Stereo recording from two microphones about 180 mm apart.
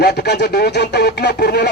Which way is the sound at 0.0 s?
65° left (ahead or behind).